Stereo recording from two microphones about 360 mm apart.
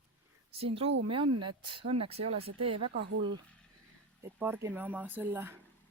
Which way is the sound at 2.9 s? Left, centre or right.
Right.